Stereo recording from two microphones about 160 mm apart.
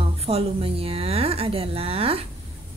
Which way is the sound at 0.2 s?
40° right (ahead or behind).